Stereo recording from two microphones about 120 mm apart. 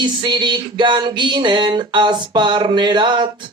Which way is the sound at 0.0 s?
40° right (ahead or behind).